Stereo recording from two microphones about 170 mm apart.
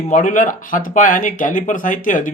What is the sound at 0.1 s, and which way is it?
Speech, 50° left (ahead or behind).